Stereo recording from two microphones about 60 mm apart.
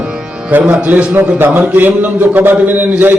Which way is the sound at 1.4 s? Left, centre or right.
Right.